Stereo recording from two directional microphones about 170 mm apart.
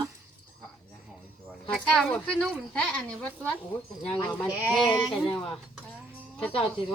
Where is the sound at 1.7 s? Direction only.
5° left (ahead or behind).